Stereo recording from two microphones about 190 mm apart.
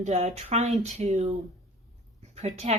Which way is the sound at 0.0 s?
35° right (ahead or behind).